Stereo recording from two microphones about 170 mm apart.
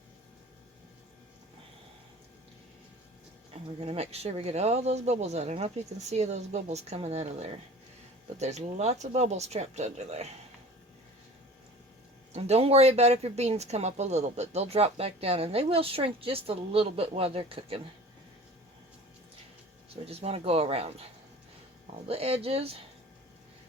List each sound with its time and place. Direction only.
3.5 s speech: 35° right (ahead or behind)
12.3 s speech: 40° right (ahead or behind)
20.1 s speech: 35° right (ahead or behind)
22.0 s speech: 35° right (ahead or behind)